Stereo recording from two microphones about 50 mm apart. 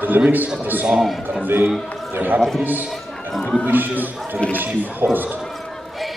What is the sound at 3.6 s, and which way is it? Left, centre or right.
Speech, right.